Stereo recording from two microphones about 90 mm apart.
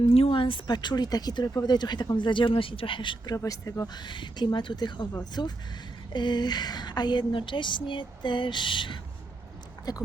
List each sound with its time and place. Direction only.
0.1 s speech: 85° left; by 3.3 s 65° left (ahead or behind)
3.3 s speech: 40° left (ahead or behind)
3.9 s speech: 60° left (ahead or behind)
9.9 s speech: 45° left (ahead or behind)